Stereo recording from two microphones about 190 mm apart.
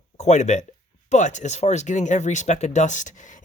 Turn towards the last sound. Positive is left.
turn(degrees=40)  # may be behind; listen again after turning